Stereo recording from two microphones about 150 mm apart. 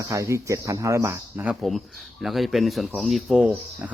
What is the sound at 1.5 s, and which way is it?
Speech, centre (ahead or behind).